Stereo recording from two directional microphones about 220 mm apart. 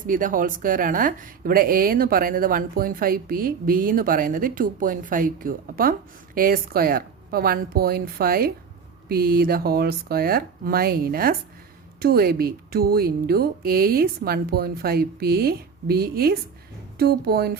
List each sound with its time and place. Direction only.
0.1 s speech: 40° right (ahead or behind)